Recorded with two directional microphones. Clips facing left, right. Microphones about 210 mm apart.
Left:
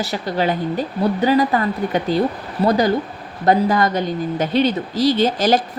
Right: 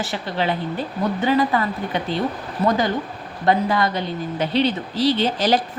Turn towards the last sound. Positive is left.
turn(degrees=45)  # may be behind; listen again after turning